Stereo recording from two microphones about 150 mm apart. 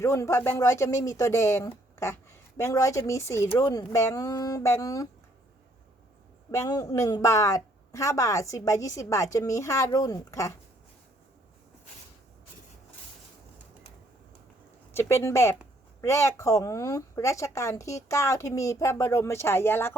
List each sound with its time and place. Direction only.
0.0 s a woman's voice: 20° left (ahead or behind)
6.5 s a woman's voice: 25° left (ahead or behind)
14.9 s a woman's voice: 20° left (ahead or behind)